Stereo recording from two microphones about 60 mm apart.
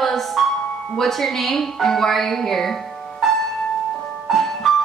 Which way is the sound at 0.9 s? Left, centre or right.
Centre.